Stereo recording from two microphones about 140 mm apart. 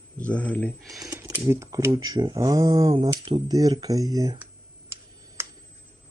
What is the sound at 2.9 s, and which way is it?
Speech, 40° right (ahead or behind).